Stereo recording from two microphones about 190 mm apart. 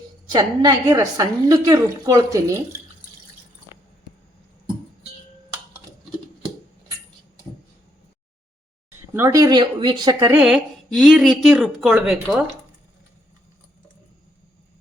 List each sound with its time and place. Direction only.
0.3 s a woman's voice: 20° right (ahead or behind)
8.9 s speech: 15° right (ahead or behind)
10.4 s speech: centre (ahead or behind)